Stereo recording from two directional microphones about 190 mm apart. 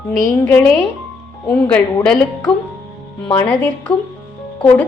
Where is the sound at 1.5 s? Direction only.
5° left (ahead or behind).